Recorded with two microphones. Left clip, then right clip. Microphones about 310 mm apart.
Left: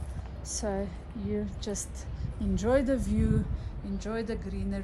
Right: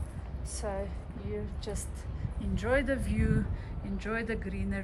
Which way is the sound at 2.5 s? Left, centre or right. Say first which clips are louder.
Left 3 dB; centre.